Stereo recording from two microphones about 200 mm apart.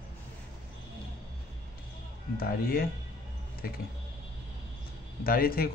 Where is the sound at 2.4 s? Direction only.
45° left (ahead or behind).